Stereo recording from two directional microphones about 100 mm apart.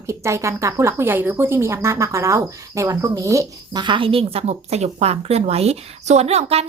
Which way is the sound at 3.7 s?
50° right (ahead or behind).